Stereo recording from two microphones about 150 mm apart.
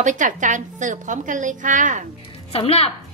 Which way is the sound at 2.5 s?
40° left (ahead or behind).